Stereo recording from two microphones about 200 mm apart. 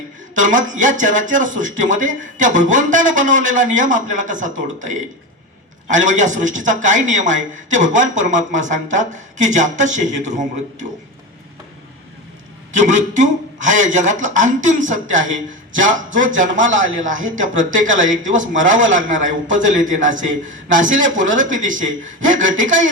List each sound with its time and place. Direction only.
0.3 s a man's voice: 40° right (ahead or behind)
5.9 s a man's voice: 40° right (ahead or behind)
12.7 s a man's voice: 40° right (ahead or behind)
22.5 s a sound: 70° right (ahead or behind)